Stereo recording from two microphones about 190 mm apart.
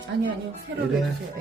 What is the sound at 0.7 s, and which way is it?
Speech, 65° right (ahead or behind).